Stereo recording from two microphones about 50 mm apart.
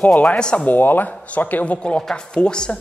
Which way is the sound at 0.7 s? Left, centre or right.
Left.